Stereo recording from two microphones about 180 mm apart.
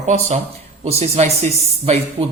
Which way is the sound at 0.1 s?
40° right (ahead or behind).